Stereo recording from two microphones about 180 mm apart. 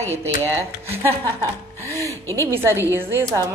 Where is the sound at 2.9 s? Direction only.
10° right (ahead or behind).